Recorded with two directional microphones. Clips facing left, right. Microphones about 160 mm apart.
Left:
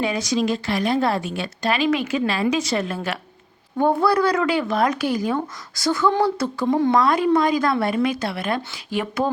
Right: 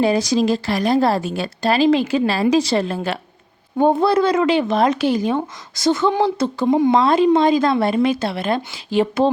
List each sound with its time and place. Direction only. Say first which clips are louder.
0.0 s speech: right 5 dB; 35° right (ahead or behind); by 7.0 s 15° right (ahead or behind)
7.0 s speech: right 4 dB; 25° right (ahead or behind)